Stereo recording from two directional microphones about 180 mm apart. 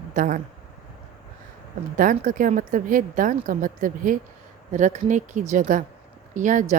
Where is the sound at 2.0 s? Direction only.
45° right (ahead or behind).